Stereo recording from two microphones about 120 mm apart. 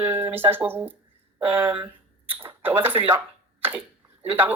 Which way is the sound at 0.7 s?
20° right (ahead or behind).